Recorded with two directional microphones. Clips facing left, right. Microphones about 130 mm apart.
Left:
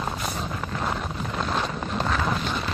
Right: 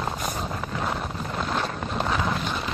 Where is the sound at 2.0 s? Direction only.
15° right (ahead or behind).